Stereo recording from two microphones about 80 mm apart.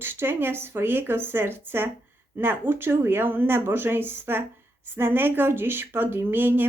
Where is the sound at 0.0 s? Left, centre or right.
Right.